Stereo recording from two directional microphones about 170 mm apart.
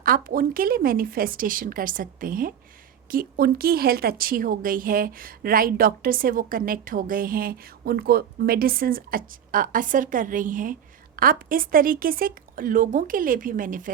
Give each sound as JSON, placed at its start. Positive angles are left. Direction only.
{"t": 0.0, "sound": "speech", "side_deg": -55}